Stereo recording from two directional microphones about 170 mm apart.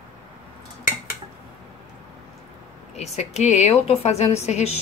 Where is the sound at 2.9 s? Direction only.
40° left (ahead or behind).